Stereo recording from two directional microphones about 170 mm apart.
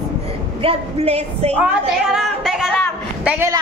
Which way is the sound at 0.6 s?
35° right (ahead or behind).